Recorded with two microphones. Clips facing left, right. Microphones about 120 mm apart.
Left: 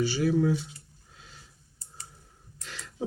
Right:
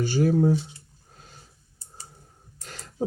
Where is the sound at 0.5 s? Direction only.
30° right (ahead or behind).